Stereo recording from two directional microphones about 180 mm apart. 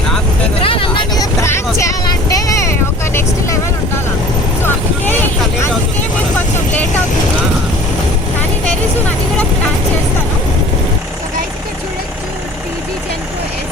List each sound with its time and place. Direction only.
0.6 s vehicle: 30° left (ahead or behind); by 5.7 s 10° left (ahead or behind)